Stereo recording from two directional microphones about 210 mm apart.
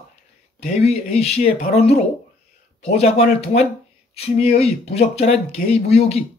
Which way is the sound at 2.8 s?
30° left (ahead or behind).